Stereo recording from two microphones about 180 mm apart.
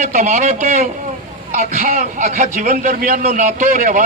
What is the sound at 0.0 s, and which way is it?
A man's voice, 40° right (ahead or behind).